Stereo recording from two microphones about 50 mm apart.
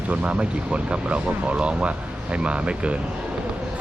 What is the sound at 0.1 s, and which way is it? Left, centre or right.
Speech, right.